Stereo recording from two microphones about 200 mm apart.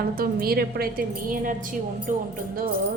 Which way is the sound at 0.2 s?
50° right (ahead or behind).